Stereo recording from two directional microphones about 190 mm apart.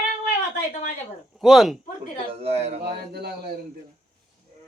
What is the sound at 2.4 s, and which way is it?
Speech, 35° right (ahead or behind).